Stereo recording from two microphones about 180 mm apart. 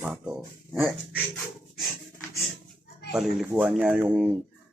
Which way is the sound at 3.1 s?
5° right (ahead or behind).